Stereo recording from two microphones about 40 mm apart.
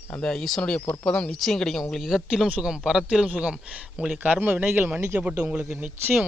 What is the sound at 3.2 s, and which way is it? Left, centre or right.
Speech, right.